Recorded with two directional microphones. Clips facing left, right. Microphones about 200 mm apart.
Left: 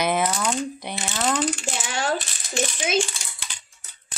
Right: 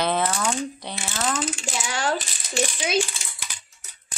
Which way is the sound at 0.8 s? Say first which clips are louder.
Left 2 dB; 15° left (ahead or behind).